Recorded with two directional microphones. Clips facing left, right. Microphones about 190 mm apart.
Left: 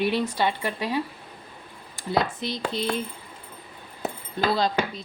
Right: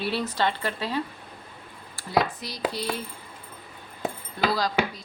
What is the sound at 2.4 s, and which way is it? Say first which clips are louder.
Speech: left 2 dB; 25° left (ahead or behind).